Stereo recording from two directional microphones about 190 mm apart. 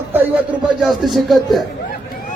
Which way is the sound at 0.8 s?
Centre (ahead or behind).